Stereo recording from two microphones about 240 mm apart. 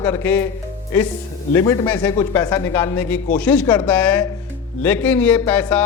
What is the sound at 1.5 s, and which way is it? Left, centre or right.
A man's voice, centre.